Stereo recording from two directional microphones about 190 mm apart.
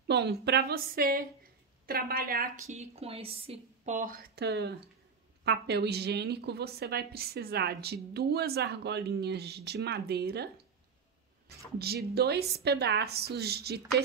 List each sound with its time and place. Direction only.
0.1 s a woman's voice: 60° right (ahead or behind)
2.7 s a woman's voice: 35° right (ahead or behind); by 14.0 s 60° right (ahead or behind)